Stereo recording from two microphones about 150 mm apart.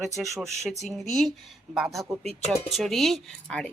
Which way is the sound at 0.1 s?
20° right (ahead or behind).